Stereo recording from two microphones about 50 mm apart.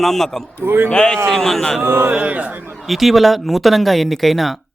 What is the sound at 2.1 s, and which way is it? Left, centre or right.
Speech, right.